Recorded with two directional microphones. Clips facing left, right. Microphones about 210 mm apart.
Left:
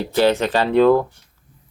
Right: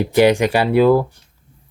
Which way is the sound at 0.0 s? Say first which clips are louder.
Right 4 dB; 15° right (ahead or behind).